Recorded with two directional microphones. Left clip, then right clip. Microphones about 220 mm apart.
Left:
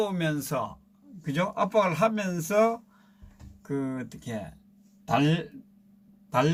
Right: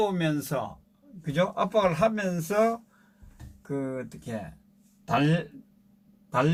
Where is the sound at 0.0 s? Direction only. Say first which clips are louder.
Right 2 dB; 10° left (ahead or behind).